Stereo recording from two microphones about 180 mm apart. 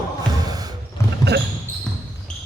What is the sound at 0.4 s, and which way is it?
Music, 20° right (ahead or behind).